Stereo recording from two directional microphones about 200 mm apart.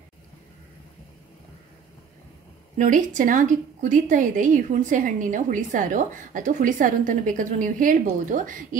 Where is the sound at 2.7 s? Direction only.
40° right (ahead or behind).